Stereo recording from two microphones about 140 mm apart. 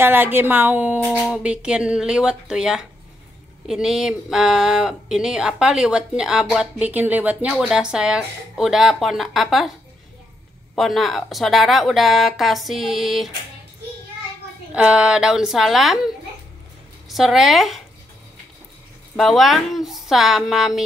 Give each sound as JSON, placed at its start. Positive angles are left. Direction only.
{"t": 0.0, "sound": "a woman's voice", "side_deg": -15}
{"t": 10.8, "sound": "speech", "side_deg": 0}
{"t": 14.7, "sound": "speech", "side_deg": -5}
{"t": 17.1, "sound": "speech", "side_deg": 0}
{"t": 19.1, "sound": "speech", "side_deg": 0}